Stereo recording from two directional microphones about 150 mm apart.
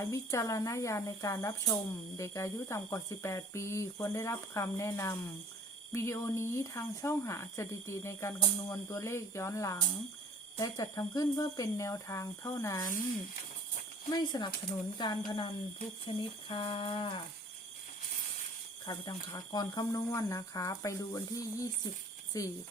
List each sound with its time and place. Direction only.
0.0 s speech: 20° left (ahead or behind)
14.1 s speech: 25° left (ahead or behind)
18.9 s speech: 30° left (ahead or behind)